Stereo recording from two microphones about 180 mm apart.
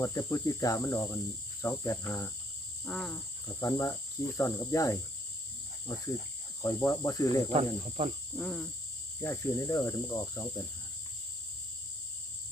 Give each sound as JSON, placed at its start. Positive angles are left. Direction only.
{"t": 0.0, "sound": "speech", "side_deg": 20}
{"t": 2.8, "sound": "cricket", "side_deg": 0}
{"t": 3.6, "sound": "speech", "side_deg": 15}
{"t": 6.6, "sound": "speech", "side_deg": 15}
{"t": 7.5, "sound": "cricket", "side_deg": -35}
{"t": 8.4, "sound": "cricket", "side_deg": 0}
{"t": 9.2, "sound": "speech", "side_deg": 15}